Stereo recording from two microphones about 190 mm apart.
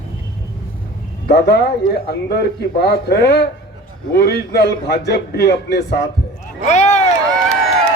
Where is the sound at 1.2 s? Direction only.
55° left (ahead or behind).